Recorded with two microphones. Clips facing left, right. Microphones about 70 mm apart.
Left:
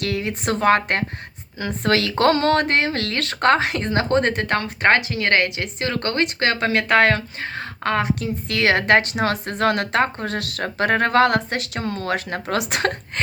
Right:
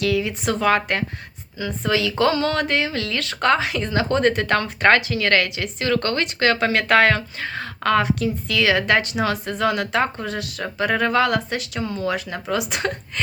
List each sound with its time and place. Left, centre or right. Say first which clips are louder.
0.0 s speech: right 3 dB; left
1.5 s speech: left 2 dB; left
6.7 s speech: left 1 dB; left
7.1 s speech: even; left